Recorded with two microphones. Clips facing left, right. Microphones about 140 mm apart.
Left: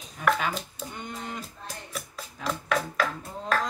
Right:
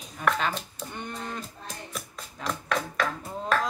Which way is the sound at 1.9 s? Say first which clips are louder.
Left 1 dB; 5° left (ahead or behind).